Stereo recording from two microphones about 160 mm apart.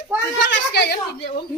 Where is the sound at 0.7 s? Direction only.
90° left.